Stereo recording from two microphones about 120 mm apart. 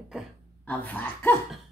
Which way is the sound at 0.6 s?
15° left (ahead or behind).